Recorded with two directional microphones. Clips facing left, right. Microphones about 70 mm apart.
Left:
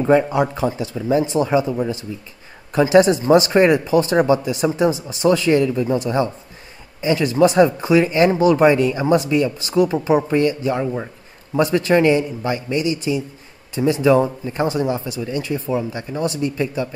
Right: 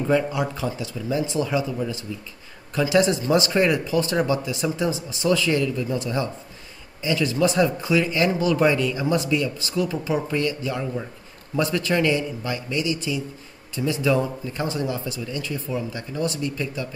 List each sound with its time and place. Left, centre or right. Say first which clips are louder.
0.0 s speech: left 6 dB; left